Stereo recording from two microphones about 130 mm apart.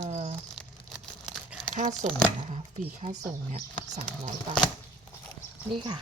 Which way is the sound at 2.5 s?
50° right (ahead or behind).